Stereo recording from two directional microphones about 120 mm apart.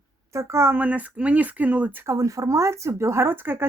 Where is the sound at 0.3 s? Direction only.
25° right (ahead or behind).